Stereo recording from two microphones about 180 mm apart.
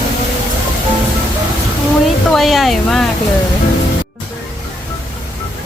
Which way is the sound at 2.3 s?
Centre (ahead or behind).